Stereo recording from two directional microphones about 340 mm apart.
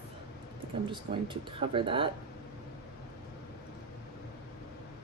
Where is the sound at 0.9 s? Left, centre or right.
Centre.